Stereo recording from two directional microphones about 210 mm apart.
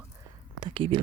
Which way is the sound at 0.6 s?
25° right (ahead or behind).